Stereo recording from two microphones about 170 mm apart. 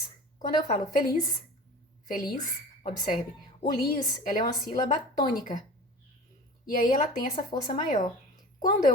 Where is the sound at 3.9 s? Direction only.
50° left (ahead or behind).